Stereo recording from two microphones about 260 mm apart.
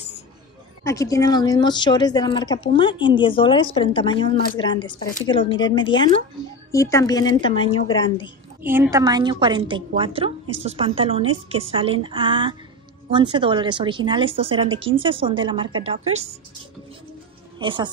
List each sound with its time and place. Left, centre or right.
0.8 s a woman's voice: centre
8.6 s a woman's voice: centre; by 16.3 s right
17.6 s speech: centre